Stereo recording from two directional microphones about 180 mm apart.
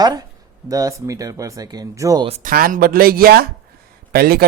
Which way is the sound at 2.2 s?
35° right (ahead or behind).